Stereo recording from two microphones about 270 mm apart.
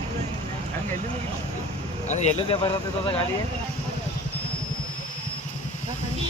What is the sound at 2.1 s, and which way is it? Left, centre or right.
Speech, left.